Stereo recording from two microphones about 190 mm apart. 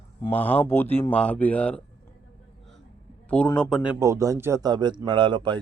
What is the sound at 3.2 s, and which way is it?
Speech, 5° left (ahead or behind).